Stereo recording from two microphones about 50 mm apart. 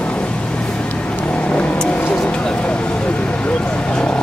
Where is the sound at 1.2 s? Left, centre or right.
Left.